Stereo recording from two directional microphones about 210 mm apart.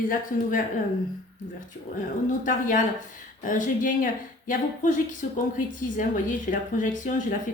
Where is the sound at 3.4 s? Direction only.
40° left (ahead or behind).